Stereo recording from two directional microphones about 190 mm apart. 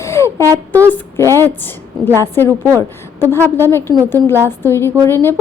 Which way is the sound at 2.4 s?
15° right (ahead or behind).